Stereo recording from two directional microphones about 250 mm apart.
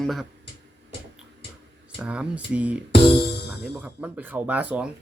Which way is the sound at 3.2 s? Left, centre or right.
Left.